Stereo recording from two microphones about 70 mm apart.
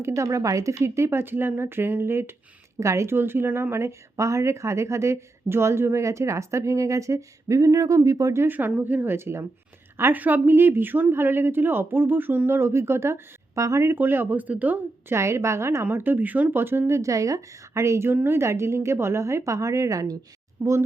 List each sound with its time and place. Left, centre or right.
0.0 s a woman's voice: right
8.4 s speech: right
15.1 s speech: right
18.1 s a woman's voice: right
20.6 s speech: right